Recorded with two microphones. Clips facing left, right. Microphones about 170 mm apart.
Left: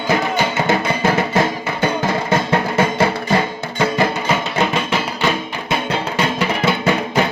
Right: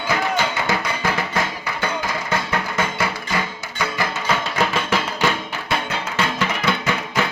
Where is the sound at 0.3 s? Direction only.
20° left (ahead or behind).